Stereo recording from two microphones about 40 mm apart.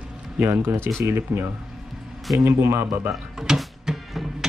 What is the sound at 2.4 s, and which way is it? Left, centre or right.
Speech, right.